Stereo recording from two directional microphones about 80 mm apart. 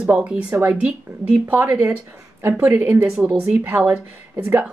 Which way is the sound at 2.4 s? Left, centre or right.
Right.